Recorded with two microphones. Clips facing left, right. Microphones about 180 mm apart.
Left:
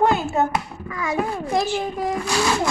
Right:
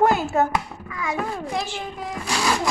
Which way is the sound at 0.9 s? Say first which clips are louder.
Left 3 dB; 40° left (ahead or behind).